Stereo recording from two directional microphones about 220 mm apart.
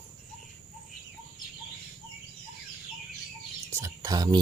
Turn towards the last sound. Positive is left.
turn(degrees=-15)  # may be behind; listen again after turning